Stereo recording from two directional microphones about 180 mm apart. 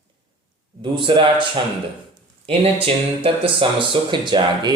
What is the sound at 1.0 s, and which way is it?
Speech, 25° right (ahead or behind).